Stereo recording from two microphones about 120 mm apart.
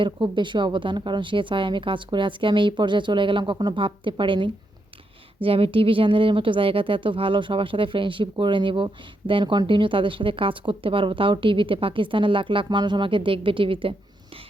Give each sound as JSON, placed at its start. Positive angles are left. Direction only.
{"t": 0.0, "sound": "speech", "side_deg": -40}